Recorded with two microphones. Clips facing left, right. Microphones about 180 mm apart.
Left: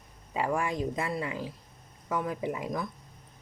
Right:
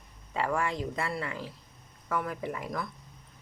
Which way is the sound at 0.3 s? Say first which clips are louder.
Left 1 dB; 15° left (ahead or behind).